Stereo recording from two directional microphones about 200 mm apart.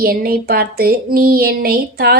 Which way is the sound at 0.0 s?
50° right (ahead or behind).